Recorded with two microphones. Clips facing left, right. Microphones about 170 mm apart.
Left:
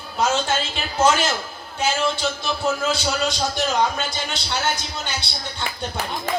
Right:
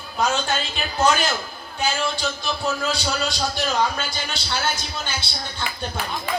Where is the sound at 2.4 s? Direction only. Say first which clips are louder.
Left 2 dB; 25° left (ahead or behind).